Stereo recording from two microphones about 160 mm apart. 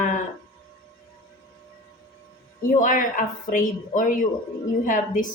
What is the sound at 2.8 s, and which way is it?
A woman's voice, 55° left (ahead or behind).